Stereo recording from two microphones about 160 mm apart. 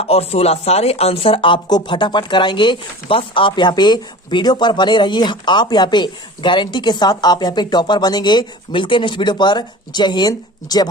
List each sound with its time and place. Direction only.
0.0 s speech: 40° left (ahead or behind); by 10.8 s 25° left (ahead or behind)